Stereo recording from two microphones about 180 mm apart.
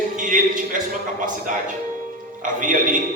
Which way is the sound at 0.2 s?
45° right (ahead or behind).